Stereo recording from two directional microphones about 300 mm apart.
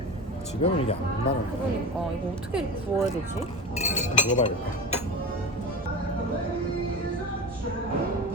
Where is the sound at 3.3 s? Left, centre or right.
Left.